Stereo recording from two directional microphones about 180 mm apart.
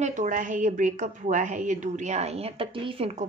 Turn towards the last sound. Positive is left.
turn(degrees=-30)  # may be behind; listen again after turning